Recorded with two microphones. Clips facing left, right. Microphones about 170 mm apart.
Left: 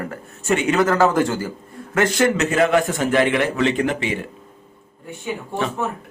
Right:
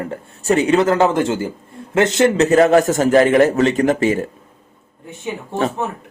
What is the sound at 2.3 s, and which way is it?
A man's voice, 40° right (ahead or behind).